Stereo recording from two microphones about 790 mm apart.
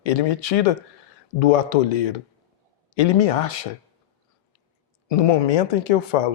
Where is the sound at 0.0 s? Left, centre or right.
Left.